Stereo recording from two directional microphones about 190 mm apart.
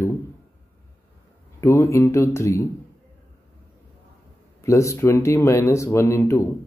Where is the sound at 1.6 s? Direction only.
15° left (ahead or behind).